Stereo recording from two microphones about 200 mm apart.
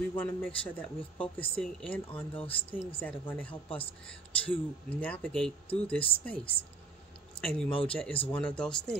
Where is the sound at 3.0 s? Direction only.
5° left (ahead or behind).